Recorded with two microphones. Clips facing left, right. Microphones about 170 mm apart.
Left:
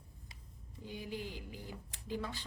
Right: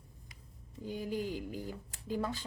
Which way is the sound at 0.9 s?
45° right (ahead or behind).